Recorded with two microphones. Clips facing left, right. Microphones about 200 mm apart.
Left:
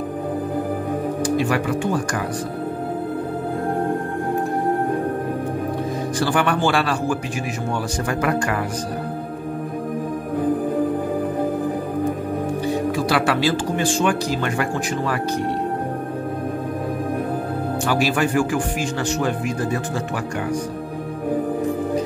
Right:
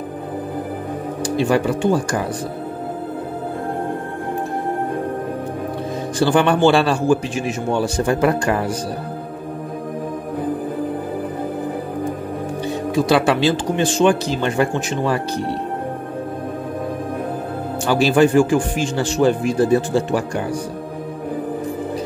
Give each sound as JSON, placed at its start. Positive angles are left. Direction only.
{"t": 1.2, "sound": "a man's voice", "side_deg": -30}
{"t": 6.1, "sound": "a man's voice", "side_deg": -25}
{"t": 12.9, "sound": "a man's voice", "side_deg": -25}
{"t": 17.8, "sound": "a man's voice", "side_deg": -30}